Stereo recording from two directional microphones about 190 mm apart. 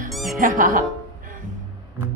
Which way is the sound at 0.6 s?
40° right (ahead or behind).